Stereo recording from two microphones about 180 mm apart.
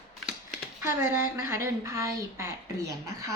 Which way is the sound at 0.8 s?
15° right (ahead or behind).